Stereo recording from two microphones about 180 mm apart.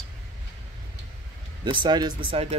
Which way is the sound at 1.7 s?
25° right (ahead or behind).